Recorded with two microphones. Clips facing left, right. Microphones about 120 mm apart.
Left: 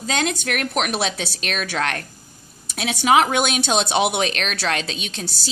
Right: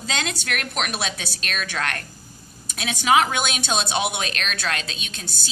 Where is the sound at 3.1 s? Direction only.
50° left (ahead or behind).